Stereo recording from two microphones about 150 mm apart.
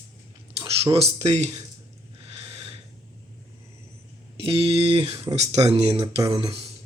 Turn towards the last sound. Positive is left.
turn(degrees=-35)  # may be behind; listen again after turning